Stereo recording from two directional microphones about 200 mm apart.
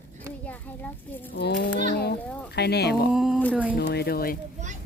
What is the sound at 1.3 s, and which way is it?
Speech, 55° left (ahead or behind).